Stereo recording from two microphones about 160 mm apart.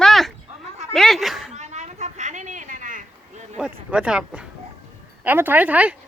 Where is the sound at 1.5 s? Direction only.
45° right (ahead or behind).